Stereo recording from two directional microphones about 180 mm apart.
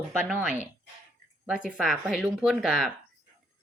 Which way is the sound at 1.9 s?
5° right (ahead or behind).